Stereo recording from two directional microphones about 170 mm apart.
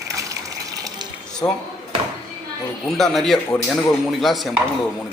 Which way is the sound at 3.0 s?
Centre (ahead or behind).